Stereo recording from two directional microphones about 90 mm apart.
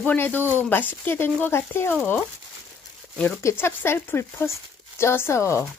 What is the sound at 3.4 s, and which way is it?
Speech, 30° left (ahead or behind).